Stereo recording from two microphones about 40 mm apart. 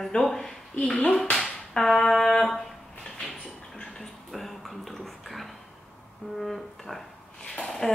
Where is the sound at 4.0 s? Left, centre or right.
Centre.